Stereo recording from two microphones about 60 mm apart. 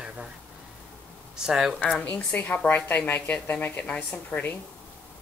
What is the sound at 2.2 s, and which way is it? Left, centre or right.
A woman's voice, left.